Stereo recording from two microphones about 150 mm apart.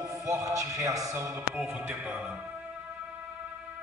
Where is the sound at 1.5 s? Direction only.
10° right (ahead or behind).